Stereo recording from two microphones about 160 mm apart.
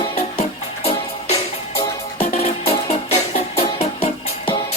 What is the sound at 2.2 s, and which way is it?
Music, 40° left (ahead or behind).